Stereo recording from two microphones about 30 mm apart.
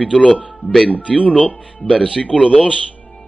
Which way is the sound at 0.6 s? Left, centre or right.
Right.